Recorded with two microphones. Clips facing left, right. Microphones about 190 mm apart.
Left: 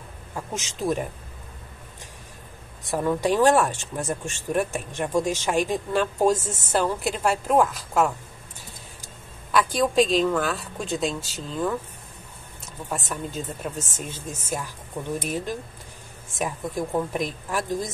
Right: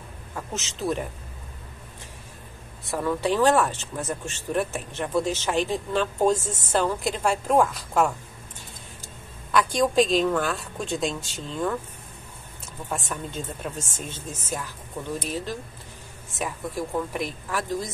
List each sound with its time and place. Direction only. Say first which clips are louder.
0.4 s speech: left 1 dB; 10° left (ahead or behind)
2.9 s a woman's voice: left 2 dB; 15° left (ahead or behind); by 8.1 s centre (ahead or behind)
9.5 s a woman's voice: even; 5° left (ahead or behind)
12.9 s speech: left 1 dB; 5° left (ahead or behind)